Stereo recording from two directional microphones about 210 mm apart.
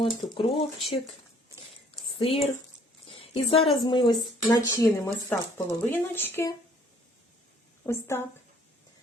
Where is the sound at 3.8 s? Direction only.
20° left (ahead or behind).